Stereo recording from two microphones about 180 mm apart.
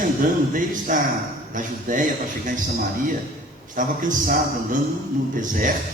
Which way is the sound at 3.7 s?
45° right (ahead or behind).